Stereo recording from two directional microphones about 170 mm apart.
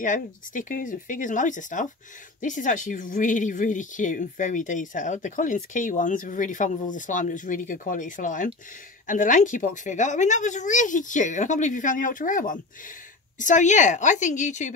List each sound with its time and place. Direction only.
0.0 s speech: 50° left (ahead or behind)